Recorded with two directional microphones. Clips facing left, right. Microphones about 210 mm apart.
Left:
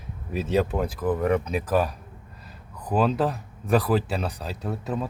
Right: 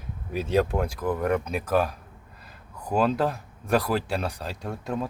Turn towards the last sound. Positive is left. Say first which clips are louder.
# left 1 dB
turn(degrees=5)  # may be behind; listen again after turning